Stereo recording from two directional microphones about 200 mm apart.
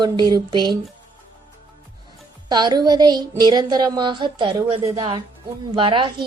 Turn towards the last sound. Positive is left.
turn(degrees=-25)  # may be behind; listen again after turning